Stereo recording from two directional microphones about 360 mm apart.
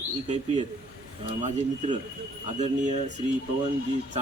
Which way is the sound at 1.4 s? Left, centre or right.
Centre.